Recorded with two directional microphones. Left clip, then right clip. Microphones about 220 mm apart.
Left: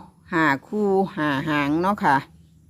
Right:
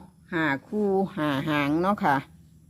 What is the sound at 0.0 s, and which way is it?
Speech, 20° left (ahead or behind).